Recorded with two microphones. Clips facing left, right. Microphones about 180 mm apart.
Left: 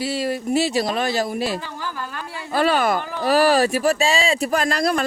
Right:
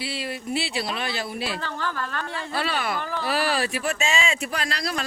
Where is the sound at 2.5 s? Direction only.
45° left (ahead or behind).